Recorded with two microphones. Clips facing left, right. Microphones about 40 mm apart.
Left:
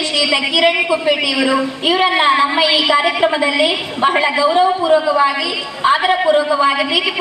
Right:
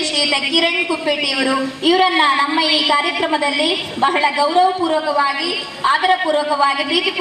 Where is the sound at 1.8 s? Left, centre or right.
Left.